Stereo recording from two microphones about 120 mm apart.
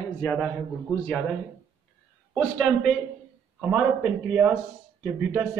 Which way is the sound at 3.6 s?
10° right (ahead or behind).